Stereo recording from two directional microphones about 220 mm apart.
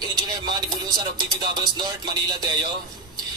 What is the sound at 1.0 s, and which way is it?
Speech, 20° right (ahead or behind).